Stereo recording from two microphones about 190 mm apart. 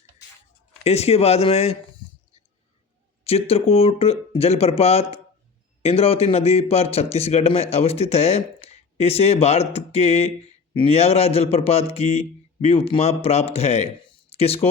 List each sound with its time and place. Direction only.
0.9 s a man's voice: 35° left (ahead or behind)
3.2 s a man's voice: 30° left (ahead or behind)